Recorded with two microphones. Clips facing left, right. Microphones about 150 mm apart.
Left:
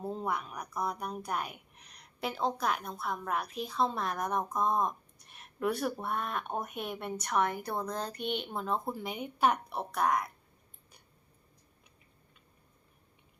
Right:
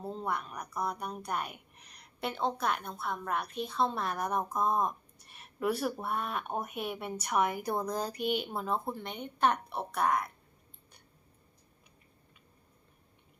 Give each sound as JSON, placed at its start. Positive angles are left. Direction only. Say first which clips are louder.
{"t": 0.0, "sound": "a woman's voice", "louder": "left 1 dB", "side_deg": 5}